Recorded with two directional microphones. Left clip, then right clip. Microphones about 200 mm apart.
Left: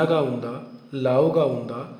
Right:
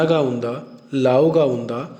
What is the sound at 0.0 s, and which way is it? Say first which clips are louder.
A man's voice: right 4 dB; 30° right (ahead or behind).